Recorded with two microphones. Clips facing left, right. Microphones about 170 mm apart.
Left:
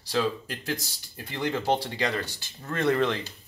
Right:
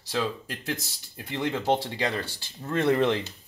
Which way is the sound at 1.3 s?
20° right (ahead or behind).